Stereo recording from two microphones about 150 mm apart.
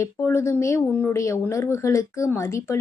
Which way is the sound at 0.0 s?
20° left (ahead or behind).